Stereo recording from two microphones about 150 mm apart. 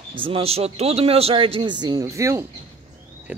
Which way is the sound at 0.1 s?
35° right (ahead or behind).